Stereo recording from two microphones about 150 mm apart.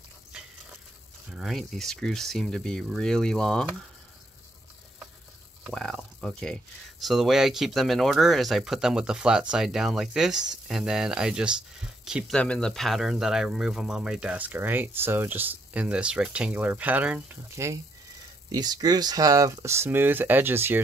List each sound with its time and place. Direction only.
1.3 s speech: centre (ahead or behind)
5.7 s speech: 5° left (ahead or behind)
12.4 s speech: 5° left (ahead or behind); by 17.7 s 15° right (ahead or behind)
18.5 s speech: 25° right (ahead or behind)